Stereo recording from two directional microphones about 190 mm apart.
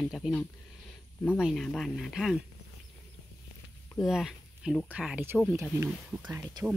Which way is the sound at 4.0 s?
Centre (ahead or behind).